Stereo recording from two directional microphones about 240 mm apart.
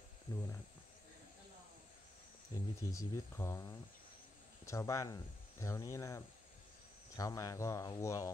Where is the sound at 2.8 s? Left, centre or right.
Centre.